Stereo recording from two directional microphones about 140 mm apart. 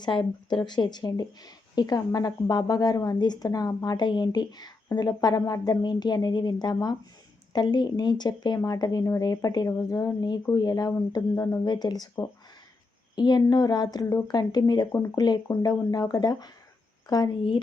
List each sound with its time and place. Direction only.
0.0 s speech: 35° left (ahead or behind)
13.1 s speech: 30° left (ahead or behind)